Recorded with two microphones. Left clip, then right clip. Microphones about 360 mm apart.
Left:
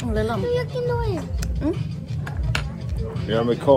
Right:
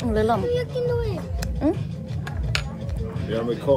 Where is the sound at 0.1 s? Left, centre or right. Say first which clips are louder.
Right 4 dB; centre.